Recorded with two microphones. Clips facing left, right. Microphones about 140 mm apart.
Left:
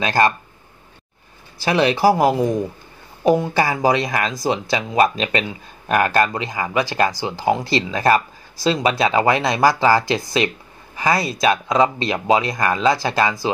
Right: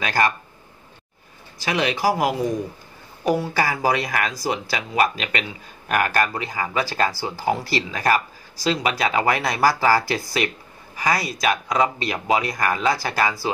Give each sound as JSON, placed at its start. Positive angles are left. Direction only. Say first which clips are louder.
{"t": 0.0, "sound": "speech", "louder": "left 4 dB", "side_deg": 25}
{"t": 1.6, "sound": "speech", "louder": "left 6 dB", "side_deg": 35}
{"t": 3.3, "sound": "speech", "louder": "left 5 dB", "side_deg": 20}